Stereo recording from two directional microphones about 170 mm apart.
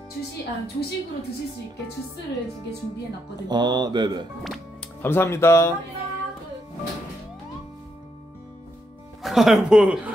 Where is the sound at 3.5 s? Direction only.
25° right (ahead or behind).